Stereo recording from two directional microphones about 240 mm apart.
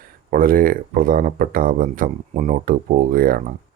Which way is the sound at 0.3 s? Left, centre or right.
Right.